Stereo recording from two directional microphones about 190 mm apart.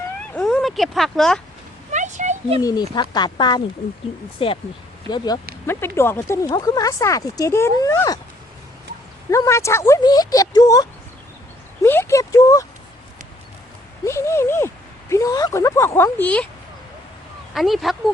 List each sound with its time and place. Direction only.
0.2 s a sound: 5° left (ahead or behind)
1.9 s a sound: 40° right (ahead or behind)
2.6 s speech: 20° left (ahead or behind)
9.3 s speech: 15° left (ahead or behind)
14.0 s speech: 15° left (ahead or behind)
17.5 s speech: centre (ahead or behind)